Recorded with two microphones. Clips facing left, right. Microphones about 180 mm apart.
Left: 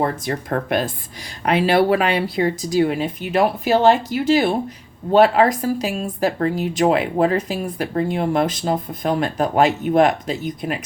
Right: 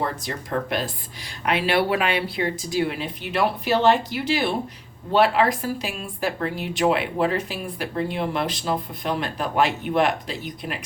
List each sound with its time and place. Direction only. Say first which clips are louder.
0.3 s a woman's voice: left 5 dB; 50° left (ahead or behind)
1.5 s a woman's voice: left 6 dB; 40° left (ahead or behind)